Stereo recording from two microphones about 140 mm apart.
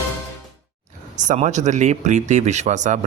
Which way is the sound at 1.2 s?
60° right (ahead or behind).